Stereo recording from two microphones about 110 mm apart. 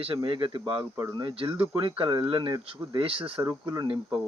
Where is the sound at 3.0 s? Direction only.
55° right (ahead or behind).